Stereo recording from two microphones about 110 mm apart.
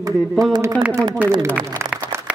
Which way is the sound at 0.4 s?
35° right (ahead or behind).